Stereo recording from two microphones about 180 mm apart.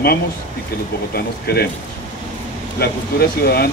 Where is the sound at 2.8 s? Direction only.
60° left (ahead or behind).